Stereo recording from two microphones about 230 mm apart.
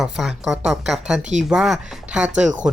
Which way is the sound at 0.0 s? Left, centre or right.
Centre.